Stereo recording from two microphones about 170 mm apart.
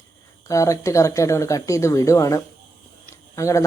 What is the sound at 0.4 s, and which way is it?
Speech, 20° left (ahead or behind).